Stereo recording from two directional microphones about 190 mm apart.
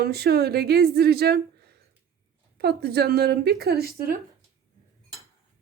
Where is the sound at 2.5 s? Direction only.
55° right (ahead or behind).